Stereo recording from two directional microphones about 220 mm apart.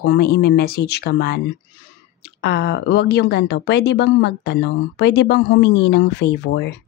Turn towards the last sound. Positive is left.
turn(degrees=50)  # may be behind; listen again after turning